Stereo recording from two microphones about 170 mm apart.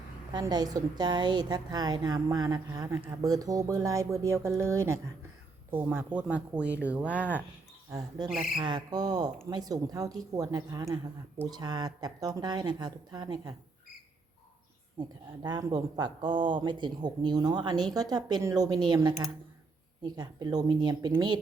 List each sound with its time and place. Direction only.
0.3 s speech: 25° right (ahead or behind)
15.0 s speech: 25° right (ahead or behind)